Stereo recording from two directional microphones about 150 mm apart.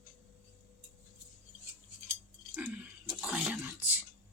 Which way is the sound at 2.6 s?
5° right (ahead or behind).